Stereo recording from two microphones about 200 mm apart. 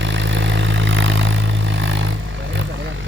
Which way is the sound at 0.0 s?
70° right (ahead or behind).